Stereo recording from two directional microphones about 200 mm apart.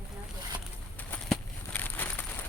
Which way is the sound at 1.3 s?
10° left (ahead or behind).